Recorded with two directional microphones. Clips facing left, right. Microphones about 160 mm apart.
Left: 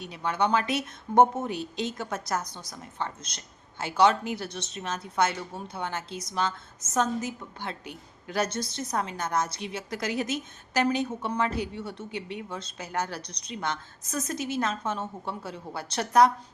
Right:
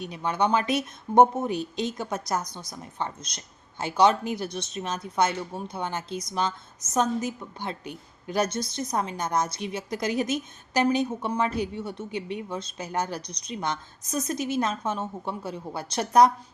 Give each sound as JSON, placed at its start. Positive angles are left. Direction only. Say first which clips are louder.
{"t": 0.0, "sound": "a woman's voice", "louder": "right 2 dB", "side_deg": -15}